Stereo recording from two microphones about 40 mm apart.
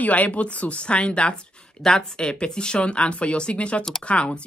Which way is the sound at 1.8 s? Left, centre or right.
Centre.